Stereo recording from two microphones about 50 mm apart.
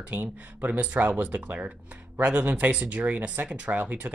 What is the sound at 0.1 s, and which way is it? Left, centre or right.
Speech, right.